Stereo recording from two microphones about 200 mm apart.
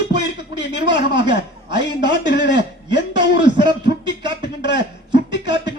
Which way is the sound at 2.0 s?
60° left (ahead or behind).